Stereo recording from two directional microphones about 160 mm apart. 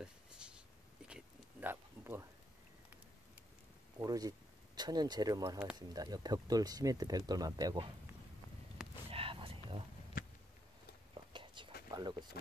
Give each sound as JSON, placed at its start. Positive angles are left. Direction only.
{"t": 0.0, "sound": "a sound", "side_deg": -5}
{"t": 4.0, "sound": "speech", "side_deg": -20}
{"t": 9.1, "sound": "whispering", "side_deg": -35}
{"t": 10.1, "sound": "a sound", "side_deg": 60}
{"t": 11.3, "sound": "whispering", "side_deg": -30}
{"t": 11.9, "sound": "speech", "side_deg": -25}